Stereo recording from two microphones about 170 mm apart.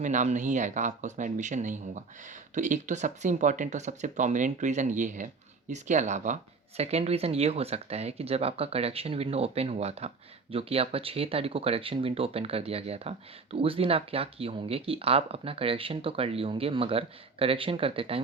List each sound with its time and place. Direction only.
0.0 s speech: 45° right (ahead or behind)